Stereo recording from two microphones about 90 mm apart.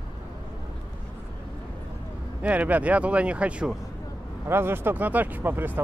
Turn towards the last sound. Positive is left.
turn(degrees=-25)  # may be behind; listen again after turning